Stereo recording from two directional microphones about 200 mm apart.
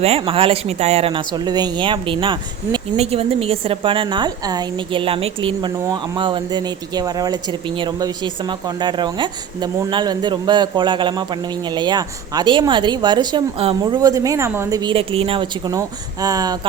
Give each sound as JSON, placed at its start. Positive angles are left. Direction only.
{"t": 0.0, "sound": "speech", "side_deg": -30}